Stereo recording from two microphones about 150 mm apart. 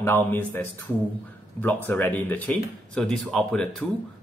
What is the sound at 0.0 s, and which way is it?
Speech, 15° left (ahead or behind).